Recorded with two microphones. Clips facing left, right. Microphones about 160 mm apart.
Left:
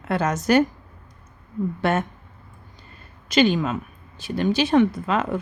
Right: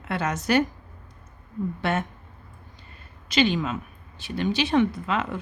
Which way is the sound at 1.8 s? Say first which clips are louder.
Left 4 dB; 45° left (ahead or behind).